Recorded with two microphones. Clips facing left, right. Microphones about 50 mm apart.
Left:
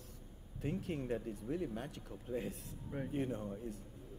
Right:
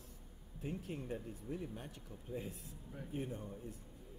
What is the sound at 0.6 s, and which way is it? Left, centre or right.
Speech, left.